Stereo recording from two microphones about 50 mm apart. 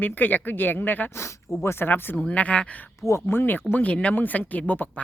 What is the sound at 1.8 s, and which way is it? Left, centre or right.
Speech, left.